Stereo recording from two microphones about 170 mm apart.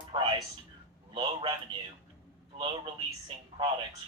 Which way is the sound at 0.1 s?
30° right (ahead or behind).